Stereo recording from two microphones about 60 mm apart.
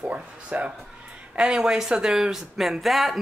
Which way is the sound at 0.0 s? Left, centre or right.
Right.